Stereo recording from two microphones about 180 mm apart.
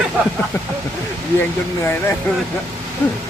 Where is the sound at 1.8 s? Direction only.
15° left (ahead or behind).